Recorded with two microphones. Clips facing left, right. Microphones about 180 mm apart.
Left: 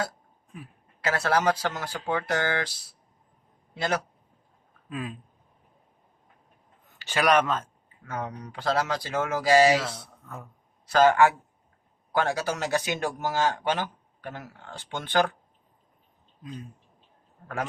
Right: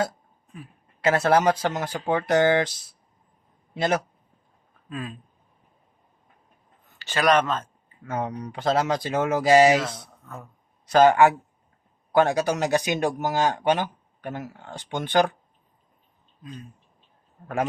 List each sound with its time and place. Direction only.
1.0 s speech: 20° right (ahead or behind)
3.8 s speech: 20° right (ahead or behind)
4.9 s speech: 10° left (ahead or behind)
7.0 s speech: 10° left (ahead or behind)
8.0 s speech: 20° right (ahead or behind)